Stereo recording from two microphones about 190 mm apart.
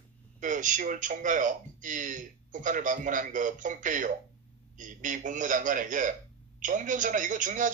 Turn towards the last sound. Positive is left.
turn(degrees=-45)  # may be behind; listen again after turning